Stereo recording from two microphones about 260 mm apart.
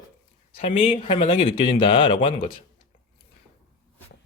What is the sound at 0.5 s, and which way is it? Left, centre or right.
Speech, left.